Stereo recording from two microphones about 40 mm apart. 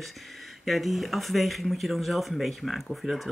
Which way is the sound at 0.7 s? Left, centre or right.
Centre.